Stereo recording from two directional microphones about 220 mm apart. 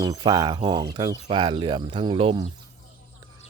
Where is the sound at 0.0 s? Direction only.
20° right (ahead or behind).